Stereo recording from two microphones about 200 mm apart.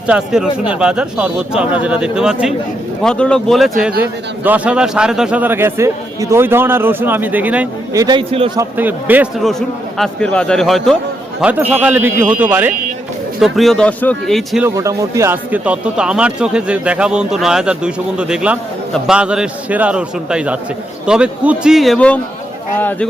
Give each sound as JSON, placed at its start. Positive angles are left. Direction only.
{"t": 0.1, "sound": "a man's voice", "side_deg": -5}
{"t": 8.0, "sound": "a man's voice", "side_deg": -25}
{"t": 8.5, "sound": "a man's voice", "side_deg": -10}
{"t": 14.6, "sound": "speech", "side_deg": -15}